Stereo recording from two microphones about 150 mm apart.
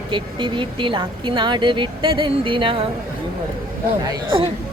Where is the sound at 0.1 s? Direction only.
30° right (ahead or behind).